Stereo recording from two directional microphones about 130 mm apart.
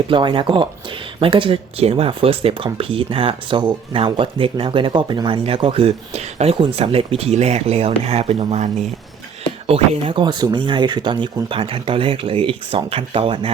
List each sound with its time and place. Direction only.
0.1 s speech: 40° right (ahead or behind)